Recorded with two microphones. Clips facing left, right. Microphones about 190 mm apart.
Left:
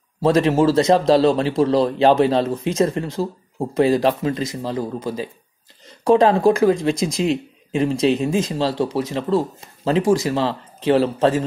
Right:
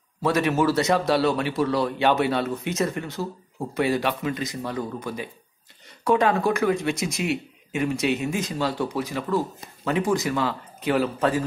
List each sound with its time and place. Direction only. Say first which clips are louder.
0.2 s speech: left 6 dB; 30° left (ahead or behind)